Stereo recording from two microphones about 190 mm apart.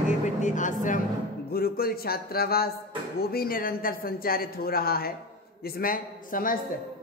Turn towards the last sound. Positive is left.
turn(degrees=45)  # may be behind; listen again after turning